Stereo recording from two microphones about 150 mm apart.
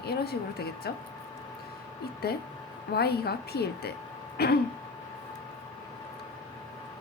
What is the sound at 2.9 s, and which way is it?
A woman's voice, 90° left.